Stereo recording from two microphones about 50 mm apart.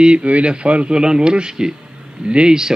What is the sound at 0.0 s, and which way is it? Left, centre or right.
Speech, right.